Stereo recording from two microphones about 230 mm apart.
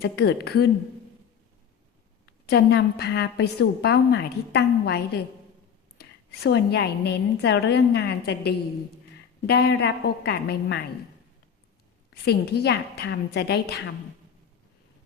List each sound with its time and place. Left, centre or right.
0.0 s a woman's voice: left
2.5 s a woman's voice: left
12.2 s a woman's voice: left